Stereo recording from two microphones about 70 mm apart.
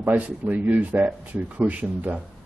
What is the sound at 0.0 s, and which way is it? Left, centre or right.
Speech, right.